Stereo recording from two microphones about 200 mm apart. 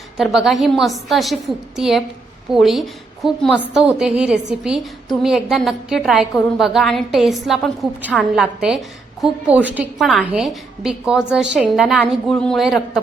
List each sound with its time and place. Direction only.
0.2 s a woman's voice: centre (ahead or behind)